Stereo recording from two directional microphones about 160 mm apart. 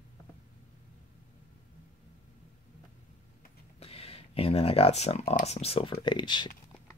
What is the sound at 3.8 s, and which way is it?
Speech, 40° left (ahead or behind).